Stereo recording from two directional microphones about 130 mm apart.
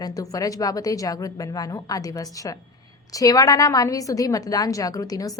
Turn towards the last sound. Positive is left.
turn(degrees=30)  # may be behind; listen again after turning